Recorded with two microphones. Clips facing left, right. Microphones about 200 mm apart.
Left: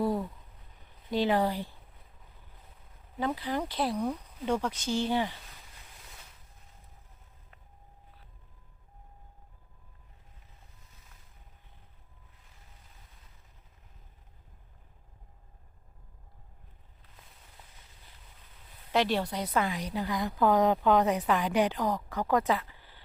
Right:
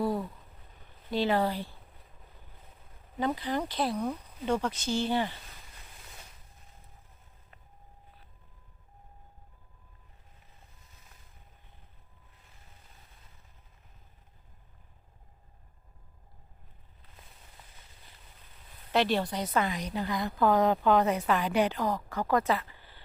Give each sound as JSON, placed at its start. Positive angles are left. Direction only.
{"t": 1.1, "sound": "a woman's voice", "side_deg": 15}
{"t": 3.2, "sound": "a woman's voice", "side_deg": 5}
{"t": 18.9, "sound": "a woman's voice", "side_deg": 10}